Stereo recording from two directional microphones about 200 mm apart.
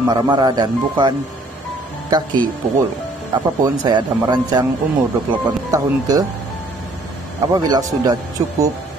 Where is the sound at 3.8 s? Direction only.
20° right (ahead or behind).